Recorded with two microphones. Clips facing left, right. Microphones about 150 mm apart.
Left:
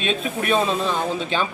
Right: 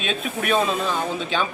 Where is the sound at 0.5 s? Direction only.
Centre (ahead or behind).